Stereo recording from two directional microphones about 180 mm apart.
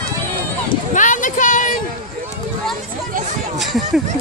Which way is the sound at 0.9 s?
45° left (ahead or behind).